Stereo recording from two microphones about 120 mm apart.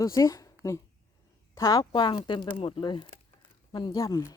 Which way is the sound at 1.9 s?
45° left (ahead or behind).